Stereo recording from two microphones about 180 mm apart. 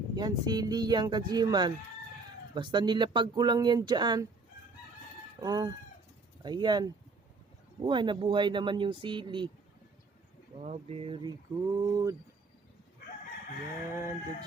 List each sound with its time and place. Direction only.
0.2 s speech: 20° right (ahead or behind)
5.4 s speech: 20° right (ahead or behind)
10.6 s speech: 35° right (ahead or behind); by 12.1 s 20° right (ahead or behind)
13.9 s a sound: 15° right (ahead or behind)